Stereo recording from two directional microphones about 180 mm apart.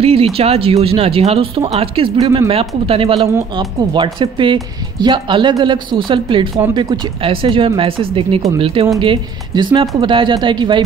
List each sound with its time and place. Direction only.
0.0 s speech: 35° right (ahead or behind)